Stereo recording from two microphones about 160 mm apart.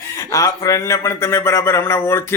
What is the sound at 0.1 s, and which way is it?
Speech, 20° left (ahead or behind).